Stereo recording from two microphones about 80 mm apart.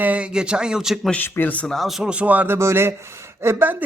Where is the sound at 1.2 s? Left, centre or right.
Left.